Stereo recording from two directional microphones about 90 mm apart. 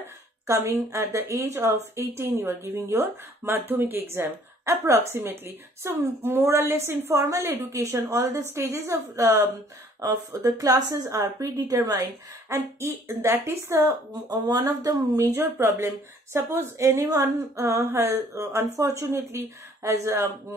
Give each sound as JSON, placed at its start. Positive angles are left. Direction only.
{"t": 0.0, "sound": "a woman's voice", "side_deg": -30}